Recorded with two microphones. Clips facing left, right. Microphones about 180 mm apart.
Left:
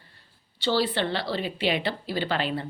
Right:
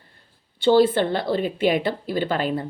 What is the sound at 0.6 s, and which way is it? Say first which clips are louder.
Speech: right 8 dB; 50° right (ahead or behind).